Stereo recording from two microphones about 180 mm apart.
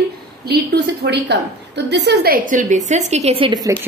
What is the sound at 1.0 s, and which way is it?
A woman's voice, 70° right (ahead or behind).